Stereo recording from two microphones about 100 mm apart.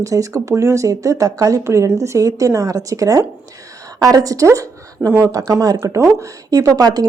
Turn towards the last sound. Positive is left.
turn(degrees=-40)  # may be behind; listen again after turning